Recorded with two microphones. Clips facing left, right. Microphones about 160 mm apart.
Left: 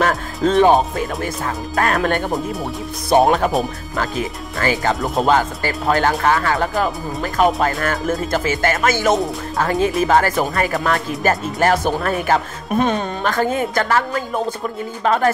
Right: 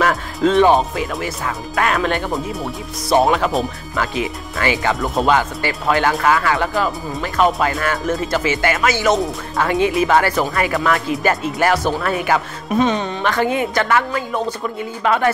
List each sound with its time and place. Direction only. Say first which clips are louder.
0.0 s music: right 1 dB; 40° left (ahead or behind)
1.2 s a woman's voice: left 1 dB; 40° left (ahead or behind)